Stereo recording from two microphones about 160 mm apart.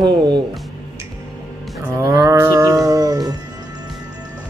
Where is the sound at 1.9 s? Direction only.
20° right (ahead or behind).